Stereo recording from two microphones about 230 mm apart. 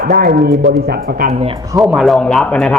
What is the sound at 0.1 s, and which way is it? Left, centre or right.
Speech, right.